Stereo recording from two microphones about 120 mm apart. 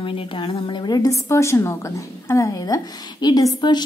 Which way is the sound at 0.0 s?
45° left (ahead or behind).